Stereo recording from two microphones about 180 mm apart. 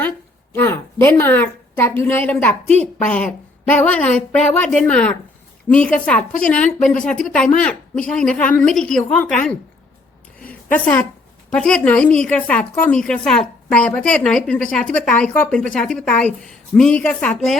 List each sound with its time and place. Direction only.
0.5 s a woman's voice: 10° left (ahead or behind)
11.5 s a woman's voice: 5° left (ahead or behind)